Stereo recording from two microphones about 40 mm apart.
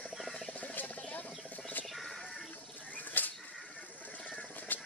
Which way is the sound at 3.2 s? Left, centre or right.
Left.